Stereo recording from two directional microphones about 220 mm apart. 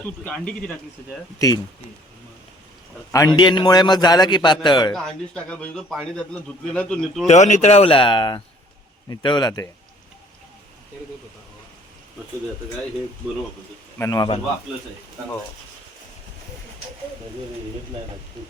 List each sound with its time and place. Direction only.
0.0 s a man's voice: 5° left (ahead or behind)
1.4 s a man's voice: 15° left (ahead or behind)
3.1 s a man's voice: 15° left (ahead or behind)
4.9 s speech: 5° left (ahead or behind)
7.3 s a man's voice: 30° left (ahead or behind)
14.0 s a man's voice: 20° left (ahead or behind)